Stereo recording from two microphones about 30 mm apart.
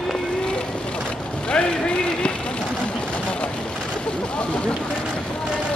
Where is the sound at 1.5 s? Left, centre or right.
Left.